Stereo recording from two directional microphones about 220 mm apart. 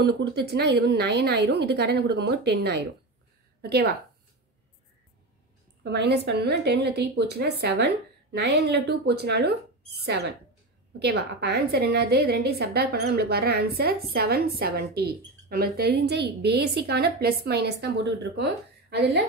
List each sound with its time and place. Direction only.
0.0 s a woman's voice: 45° right (ahead or behind)
5.9 s a woman's voice: 50° right (ahead or behind)